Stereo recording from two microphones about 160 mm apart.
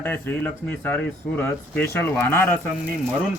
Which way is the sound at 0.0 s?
10° left (ahead or behind).